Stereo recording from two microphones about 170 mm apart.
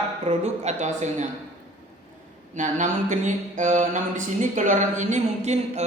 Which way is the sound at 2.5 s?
45° right (ahead or behind).